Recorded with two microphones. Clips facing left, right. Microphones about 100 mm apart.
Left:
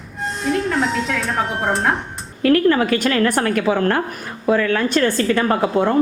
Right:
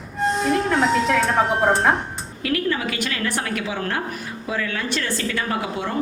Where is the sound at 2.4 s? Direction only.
45° left (ahead or behind).